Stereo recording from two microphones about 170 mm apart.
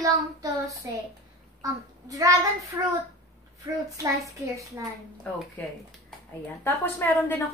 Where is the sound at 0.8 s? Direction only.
20° right (ahead or behind).